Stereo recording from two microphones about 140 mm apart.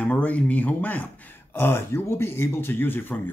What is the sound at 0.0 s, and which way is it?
Speech, 10° left (ahead or behind).